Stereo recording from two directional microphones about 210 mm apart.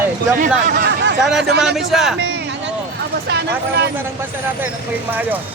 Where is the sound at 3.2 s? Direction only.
50° right (ahead or behind).